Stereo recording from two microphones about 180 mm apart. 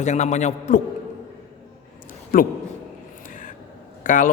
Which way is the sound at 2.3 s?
50° left (ahead or behind).